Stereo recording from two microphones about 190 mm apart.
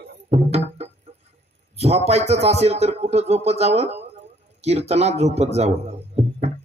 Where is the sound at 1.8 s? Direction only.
35° right (ahead or behind).